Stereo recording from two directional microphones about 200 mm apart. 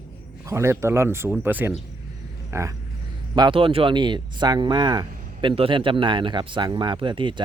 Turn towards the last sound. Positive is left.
turn(degrees=-25)  # may be behind; listen again after turning